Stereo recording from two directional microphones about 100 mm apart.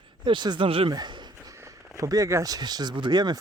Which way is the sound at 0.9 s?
50° right (ahead or behind).